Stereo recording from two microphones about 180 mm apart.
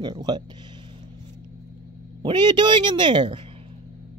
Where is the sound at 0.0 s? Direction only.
20° right (ahead or behind).